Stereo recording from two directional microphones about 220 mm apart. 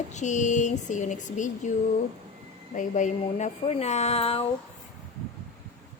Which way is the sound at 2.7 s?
35° left (ahead or behind).